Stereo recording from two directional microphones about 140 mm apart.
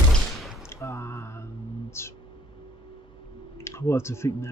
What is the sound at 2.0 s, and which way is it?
Speech, 20° left (ahead or behind).